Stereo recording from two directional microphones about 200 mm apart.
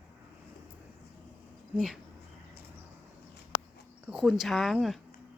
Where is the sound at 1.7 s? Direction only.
Centre (ahead or behind).